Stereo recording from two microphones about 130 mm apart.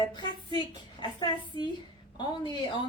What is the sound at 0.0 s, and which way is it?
A woman's voice, 35° left (ahead or behind).